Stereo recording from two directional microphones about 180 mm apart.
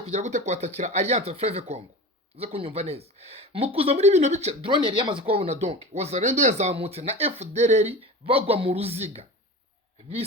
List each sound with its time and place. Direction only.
0.0 s speech: 40° right (ahead or behind)